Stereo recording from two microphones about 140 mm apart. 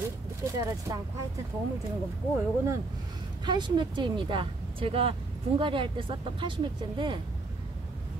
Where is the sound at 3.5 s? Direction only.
35° right (ahead or behind).